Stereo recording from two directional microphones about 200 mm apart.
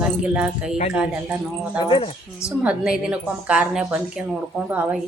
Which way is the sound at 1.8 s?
25° left (ahead or behind).